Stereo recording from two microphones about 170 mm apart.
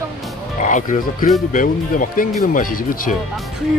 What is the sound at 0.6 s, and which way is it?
Speech, 50° left (ahead or behind).